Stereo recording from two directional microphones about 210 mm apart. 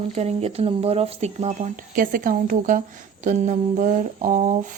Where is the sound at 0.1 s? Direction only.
30° right (ahead or behind).